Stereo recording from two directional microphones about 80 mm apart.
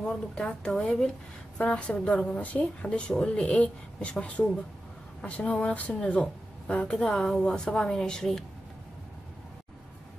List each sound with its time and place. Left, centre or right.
0.0 s a woman's voice: centre